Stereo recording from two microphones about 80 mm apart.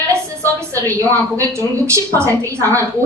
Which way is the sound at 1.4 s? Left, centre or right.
Right.